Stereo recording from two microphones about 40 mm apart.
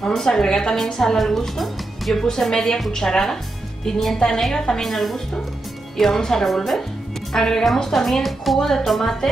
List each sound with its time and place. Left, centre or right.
0.0 s a woman's voice: centre
1.1 s speech: centre
2.5 s speech: centre
4.8 s speech: centre